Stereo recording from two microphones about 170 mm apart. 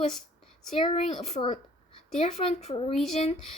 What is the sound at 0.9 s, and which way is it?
Speech, 40° left (ahead or behind).